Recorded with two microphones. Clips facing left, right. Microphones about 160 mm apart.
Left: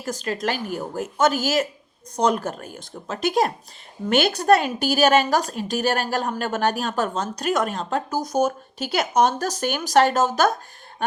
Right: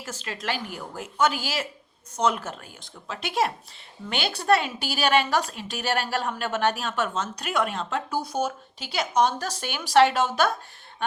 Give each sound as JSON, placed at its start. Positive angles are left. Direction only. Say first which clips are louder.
{"t": 0.0, "sound": "a woman's voice", "louder": "left 8 dB", "side_deg": 40}